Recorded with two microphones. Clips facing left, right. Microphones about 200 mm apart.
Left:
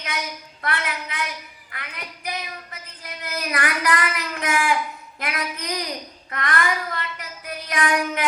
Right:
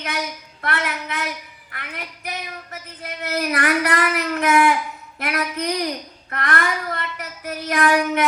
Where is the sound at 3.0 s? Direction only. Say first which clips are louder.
Right 6 dB; 55° right (ahead or behind).